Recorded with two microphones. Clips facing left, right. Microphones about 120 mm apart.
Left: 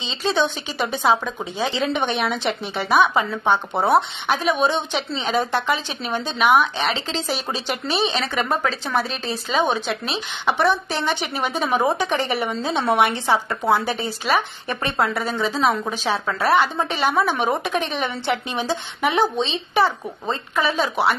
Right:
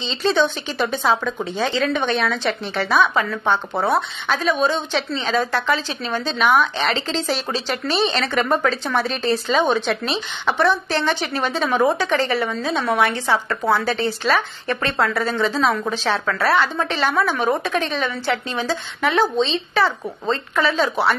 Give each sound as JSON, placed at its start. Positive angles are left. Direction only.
{"t": 0.0, "sound": "a woman's voice", "side_deg": 10}